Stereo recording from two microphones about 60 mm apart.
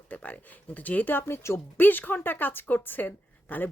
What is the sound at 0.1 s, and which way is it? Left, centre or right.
Speech, left.